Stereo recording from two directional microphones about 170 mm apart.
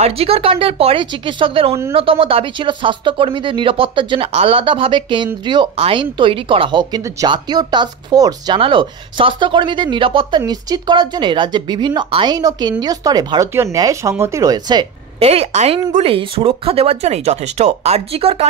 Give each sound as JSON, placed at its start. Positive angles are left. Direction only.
{"t": 0.0, "sound": "speech", "side_deg": -35}
{"t": 15.1, "sound": "speech", "side_deg": -35}